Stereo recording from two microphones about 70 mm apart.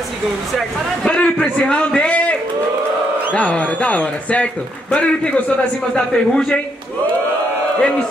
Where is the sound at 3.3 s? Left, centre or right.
Centre.